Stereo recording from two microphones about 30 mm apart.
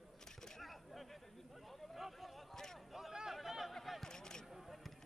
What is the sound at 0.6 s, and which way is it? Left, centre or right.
Single-lens reflex camera, centre.